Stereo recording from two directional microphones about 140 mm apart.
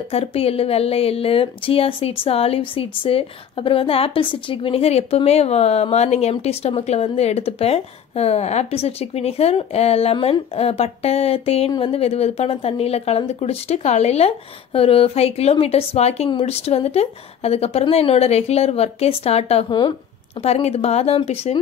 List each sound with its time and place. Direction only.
0.1 s speech: 45° left (ahead or behind)